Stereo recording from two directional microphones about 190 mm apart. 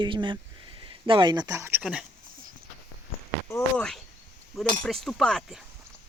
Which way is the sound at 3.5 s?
5° left (ahead or behind).